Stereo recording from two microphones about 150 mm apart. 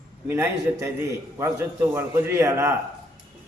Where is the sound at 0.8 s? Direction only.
20° right (ahead or behind).